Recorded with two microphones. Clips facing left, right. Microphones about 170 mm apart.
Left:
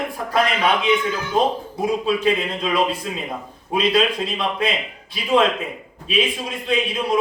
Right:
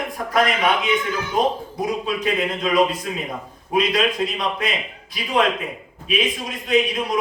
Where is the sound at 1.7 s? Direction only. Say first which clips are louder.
Left 3 dB; 30° left (ahead or behind).